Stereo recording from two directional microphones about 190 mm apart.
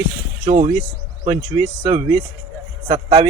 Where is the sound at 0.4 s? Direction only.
35° right (ahead or behind).